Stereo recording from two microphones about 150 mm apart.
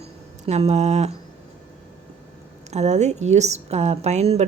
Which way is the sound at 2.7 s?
50° right (ahead or behind).